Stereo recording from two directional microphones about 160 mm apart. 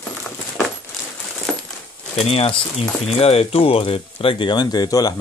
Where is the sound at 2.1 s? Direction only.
40° left (ahead or behind).